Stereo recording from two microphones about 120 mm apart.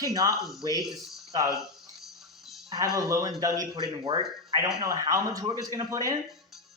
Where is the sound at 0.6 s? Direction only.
30° right (ahead or behind).